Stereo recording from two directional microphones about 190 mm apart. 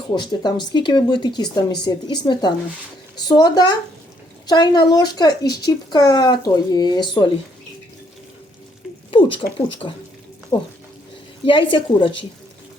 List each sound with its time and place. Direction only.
0.2 s speech: 25° left (ahead or behind)
9.0 s speech: 25° left (ahead or behind)